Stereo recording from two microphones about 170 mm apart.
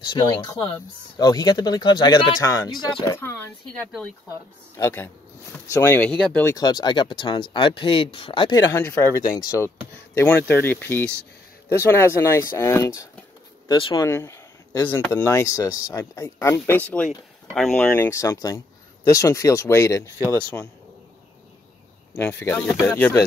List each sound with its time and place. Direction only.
0.0 s speech: 25° left (ahead or behind)
4.3 s speech: 20° left (ahead or behind)
6.4 s speech: 25° left (ahead or behind)
8.7 s speech: 15° left (ahead or behind)
14.0 s speech: 15° left (ahead or behind)
22.1 s speech: 10° left (ahead or behind)